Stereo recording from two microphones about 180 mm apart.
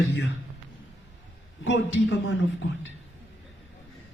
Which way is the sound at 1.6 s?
90° left.